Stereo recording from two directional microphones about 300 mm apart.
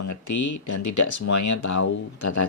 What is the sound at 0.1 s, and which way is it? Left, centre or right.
Speech, left.